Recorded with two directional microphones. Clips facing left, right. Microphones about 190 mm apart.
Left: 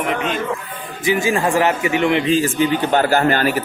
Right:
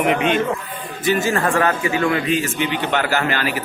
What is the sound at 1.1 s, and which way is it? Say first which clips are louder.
A man's voice: left 2 dB; 15° left (ahead or behind).